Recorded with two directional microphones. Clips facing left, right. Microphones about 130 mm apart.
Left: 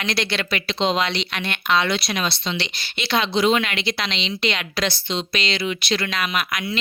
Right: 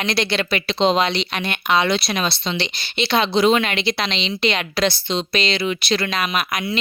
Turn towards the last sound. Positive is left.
turn(degrees=-25)  # may be behind; listen again after turning